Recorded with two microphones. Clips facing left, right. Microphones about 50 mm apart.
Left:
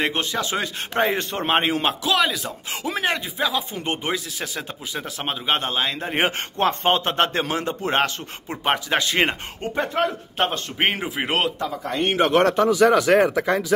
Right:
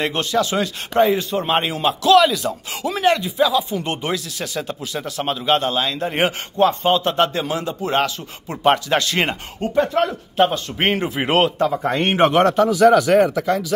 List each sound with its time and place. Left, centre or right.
0.0 s speech: centre
1.1 s speech: left
1.5 s a man's voice: left
2.0 s speech: centre
6.6 s a man's voice: left
8.5 s speech: centre
10.8 s speech: centre
11.5 s speech: right
12.3 s speech: centre
13.3 s speech: left